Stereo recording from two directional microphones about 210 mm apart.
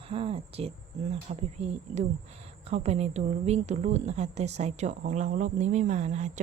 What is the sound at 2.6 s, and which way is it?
A woman's voice, 30° right (ahead or behind).